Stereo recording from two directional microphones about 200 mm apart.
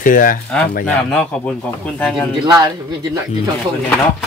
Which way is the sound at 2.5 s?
20° right (ahead or behind).